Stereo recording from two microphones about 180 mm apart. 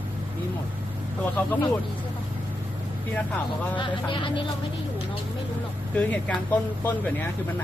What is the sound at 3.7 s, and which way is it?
Speech, 25° left (ahead or behind).